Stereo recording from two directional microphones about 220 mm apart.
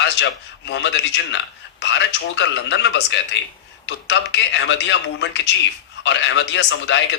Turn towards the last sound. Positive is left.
turn(degrees=55)  # may be behind; listen again after turning